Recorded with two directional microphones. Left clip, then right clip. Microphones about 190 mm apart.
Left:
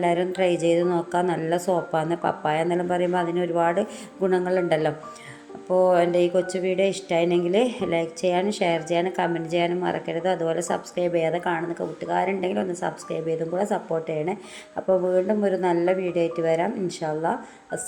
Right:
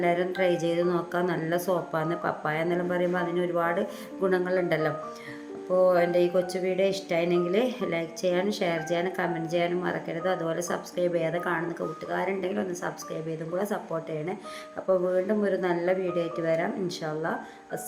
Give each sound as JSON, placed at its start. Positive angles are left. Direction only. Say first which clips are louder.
{"t": 0.0, "sound": "speech", "louder": "left 3 dB", "side_deg": 10}
{"t": 6.3, "sound": "speech", "louder": "left 3 dB", "side_deg": 15}